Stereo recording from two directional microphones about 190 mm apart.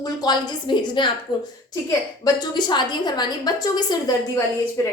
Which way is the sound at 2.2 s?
25° left (ahead or behind).